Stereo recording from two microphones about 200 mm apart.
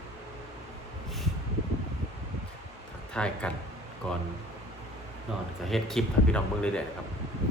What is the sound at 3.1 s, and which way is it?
Speech, 5° left (ahead or behind).